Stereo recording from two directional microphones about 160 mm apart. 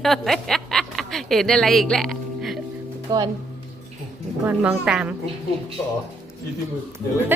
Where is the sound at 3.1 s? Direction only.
25° right (ahead or behind).